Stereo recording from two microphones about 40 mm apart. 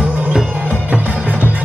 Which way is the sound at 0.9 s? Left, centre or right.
Right.